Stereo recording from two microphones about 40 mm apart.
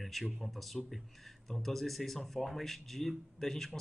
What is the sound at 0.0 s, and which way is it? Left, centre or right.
Speech, centre.